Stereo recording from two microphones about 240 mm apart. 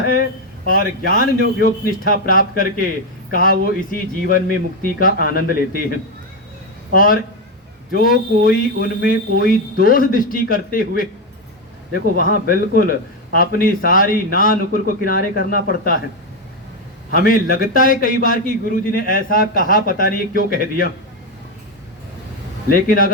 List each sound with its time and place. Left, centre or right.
0.7 s a man's voice: left
6.9 s a man's voice: left
12.1 s a man's voice: left
17.1 s a man's voice: left
22.7 s a man's voice: left